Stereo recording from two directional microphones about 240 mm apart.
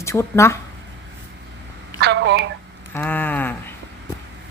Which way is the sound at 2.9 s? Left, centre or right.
Centre.